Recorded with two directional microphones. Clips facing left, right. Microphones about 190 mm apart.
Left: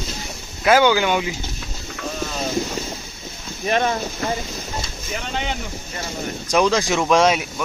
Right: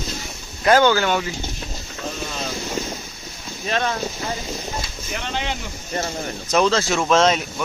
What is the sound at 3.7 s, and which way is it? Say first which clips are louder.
Speech: left 3 dB; 15° left (ahead or behind).